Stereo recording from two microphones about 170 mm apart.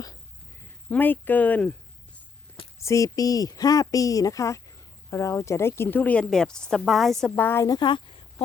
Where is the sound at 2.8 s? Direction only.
20° left (ahead or behind).